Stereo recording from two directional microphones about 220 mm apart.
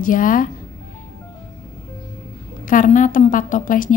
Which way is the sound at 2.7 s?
35° left (ahead or behind).